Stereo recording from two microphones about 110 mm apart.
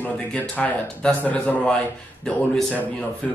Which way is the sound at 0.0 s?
15° left (ahead or behind).